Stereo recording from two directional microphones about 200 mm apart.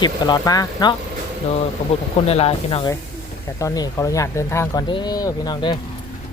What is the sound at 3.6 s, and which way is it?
Speech, 15° left (ahead or behind).